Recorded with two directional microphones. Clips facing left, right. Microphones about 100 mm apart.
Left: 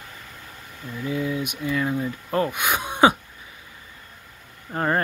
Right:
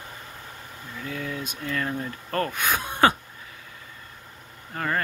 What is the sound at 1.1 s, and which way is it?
Speech, 15° left (ahead or behind).